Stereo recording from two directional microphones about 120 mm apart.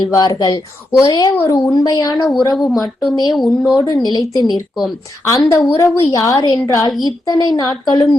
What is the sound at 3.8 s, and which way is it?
A woman's voice, 30° left (ahead or behind).